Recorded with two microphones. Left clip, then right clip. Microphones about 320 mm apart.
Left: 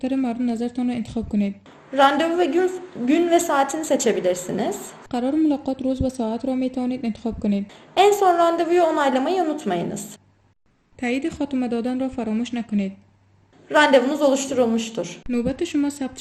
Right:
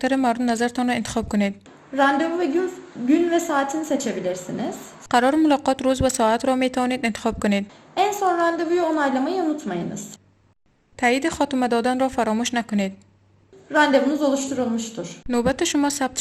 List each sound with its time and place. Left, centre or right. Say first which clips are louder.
0.0 s a woman's voice: right 4 dB; right
2.0 s a woman's voice: left 2 dB; centre
5.0 s a woman's voice: right 4 dB; right
7.9 s a woman's voice: left 4 dB; centre
11.0 s a woman's voice: right 5 dB; centre
13.7 s a woman's voice: left 2 dB; centre
15.3 s a woman's voice: right 5 dB; centre